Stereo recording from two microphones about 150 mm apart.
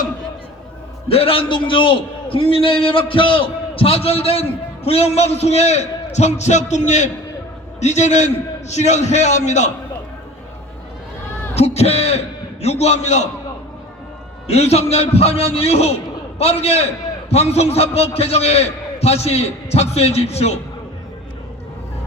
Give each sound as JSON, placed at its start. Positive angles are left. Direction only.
{"t": 1.0, "sound": "a man's voice", "side_deg": 40}
{"t": 11.5, "sound": "a man's voice", "side_deg": 45}
{"t": 14.4, "sound": "a man's voice", "side_deg": 45}